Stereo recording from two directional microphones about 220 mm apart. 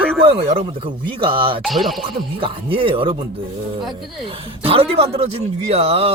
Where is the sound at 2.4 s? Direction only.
25° right (ahead or behind).